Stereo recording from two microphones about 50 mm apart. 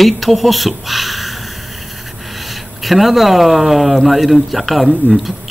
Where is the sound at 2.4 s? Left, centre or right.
Centre.